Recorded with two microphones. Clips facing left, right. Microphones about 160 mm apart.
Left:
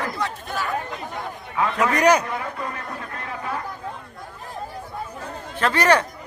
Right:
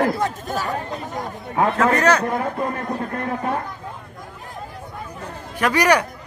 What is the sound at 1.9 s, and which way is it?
Speech, 15° left (ahead or behind).